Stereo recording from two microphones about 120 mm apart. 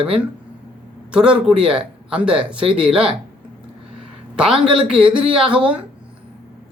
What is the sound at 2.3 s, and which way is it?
Speech, 50° right (ahead or behind).